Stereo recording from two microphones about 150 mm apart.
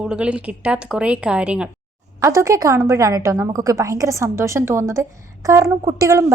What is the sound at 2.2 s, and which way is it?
A woman's voice, 20° right (ahead or behind).